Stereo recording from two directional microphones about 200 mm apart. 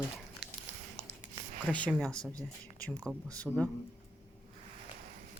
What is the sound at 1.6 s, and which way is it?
Speech, 5° left (ahead or behind).